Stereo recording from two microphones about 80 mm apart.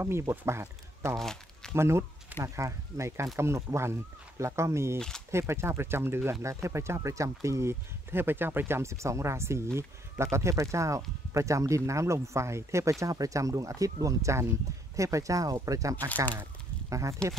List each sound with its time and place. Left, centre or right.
0.0 s speech: right
1.1 s crumpling: centre
1.8 s speech: right
4.9 s speech: centre
5.3 s speech: right